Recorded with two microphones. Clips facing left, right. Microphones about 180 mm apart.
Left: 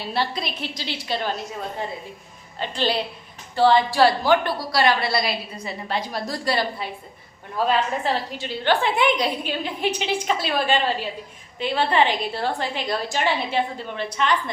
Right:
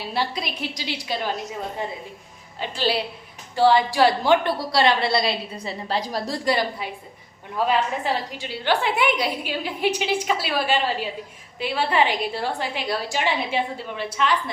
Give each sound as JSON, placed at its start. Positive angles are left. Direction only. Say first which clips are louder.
{"t": 0.1, "sound": "a woman's voice", "louder": "left 1 dB", "side_deg": -10}
{"t": 2.6, "sound": "a woman's voice", "louder": "even", "side_deg": -5}
{"t": 4.3, "sound": "a woman's voice", "louder": "right 1 dB", "side_deg": -25}
{"t": 6.3, "sound": "a woman's voice", "louder": "right 1 dB", "side_deg": -20}